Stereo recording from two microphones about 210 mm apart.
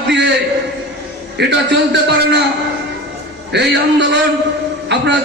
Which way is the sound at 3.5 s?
55° right (ahead or behind).